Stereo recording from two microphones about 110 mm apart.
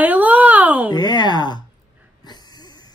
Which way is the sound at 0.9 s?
40° left (ahead or behind).